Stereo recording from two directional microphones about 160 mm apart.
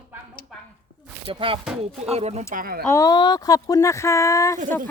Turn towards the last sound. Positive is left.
turn(degrees=20)  # may be behind; listen again after turning